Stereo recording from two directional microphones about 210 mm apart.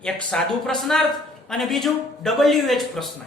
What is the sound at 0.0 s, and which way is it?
Speech, 5° left (ahead or behind).